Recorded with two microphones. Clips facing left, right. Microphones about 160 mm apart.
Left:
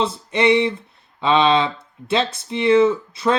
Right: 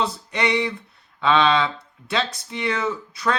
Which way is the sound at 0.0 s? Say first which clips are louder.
Left 5 dB; 25° left (ahead or behind).